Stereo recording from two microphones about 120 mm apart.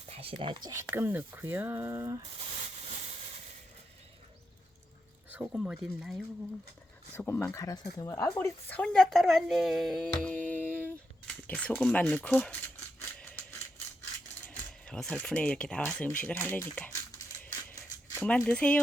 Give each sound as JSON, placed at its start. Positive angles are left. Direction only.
{"t": 0.1, "sound": "speech", "side_deg": -50}
{"t": 0.7, "sound": "speech", "side_deg": -20}
{"t": 5.3, "sound": "a woman's voice", "side_deg": -10}
{"t": 7.3, "sound": "a woman's voice", "side_deg": 20}
{"t": 10.3, "sound": "music", "side_deg": 15}
{"t": 11.4, "sound": "speech", "side_deg": 10}
{"t": 14.5, "sound": "speech", "side_deg": 5}
{"t": 16.2, "sound": "speech", "side_deg": 20}
{"t": 18.2, "sound": "speech", "side_deg": 10}